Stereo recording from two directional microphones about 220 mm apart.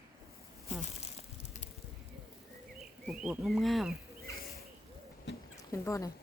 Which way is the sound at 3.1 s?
Centre (ahead or behind).